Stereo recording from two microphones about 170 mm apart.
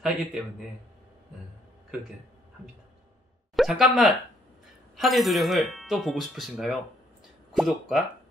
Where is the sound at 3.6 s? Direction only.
Centre (ahead or behind).